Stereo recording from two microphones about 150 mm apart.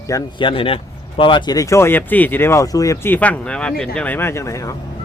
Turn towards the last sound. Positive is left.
turn(degrees=20)  # may be behind; listen again after turning